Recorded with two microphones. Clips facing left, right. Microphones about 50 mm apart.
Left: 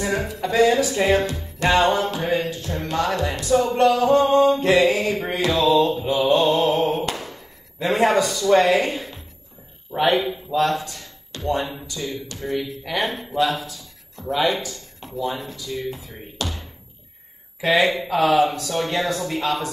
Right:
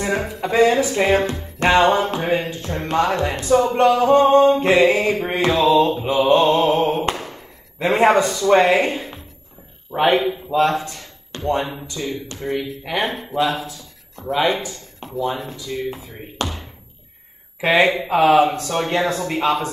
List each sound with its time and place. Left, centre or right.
0.0 s speech: right
17.6 s speech: right